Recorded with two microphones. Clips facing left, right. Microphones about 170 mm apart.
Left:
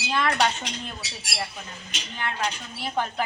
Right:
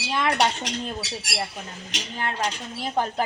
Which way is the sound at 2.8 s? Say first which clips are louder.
Right 3 dB; 35° right (ahead or behind).